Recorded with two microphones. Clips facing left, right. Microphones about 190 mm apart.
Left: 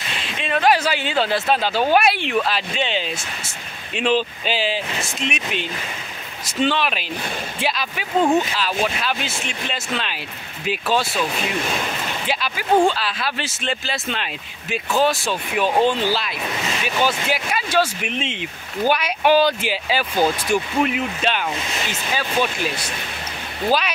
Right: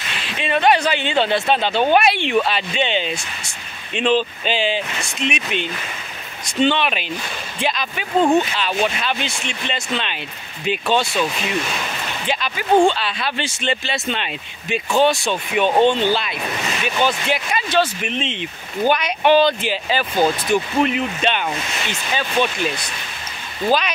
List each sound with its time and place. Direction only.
0.2 s speech: centre (ahead or behind)
12.3 s speech: 5° left (ahead or behind)